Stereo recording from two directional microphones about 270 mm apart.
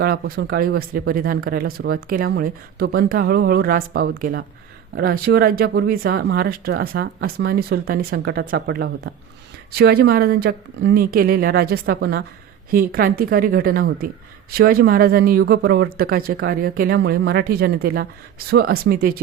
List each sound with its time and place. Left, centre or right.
0.0 s speech: right